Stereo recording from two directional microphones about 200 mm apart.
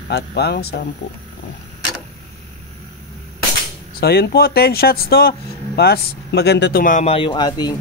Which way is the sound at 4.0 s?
50° left (ahead or behind).